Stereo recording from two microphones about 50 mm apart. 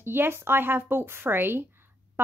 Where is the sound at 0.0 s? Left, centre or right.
Right.